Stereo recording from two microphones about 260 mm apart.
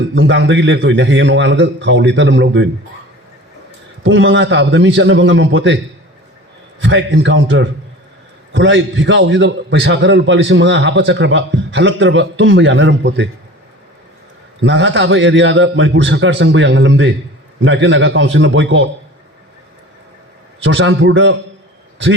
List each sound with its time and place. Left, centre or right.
0.1 s a man's voice: right
4.0 s a man's voice: right
6.8 s a man's voice: right
14.6 s a man's voice: right
20.7 s a man's voice: right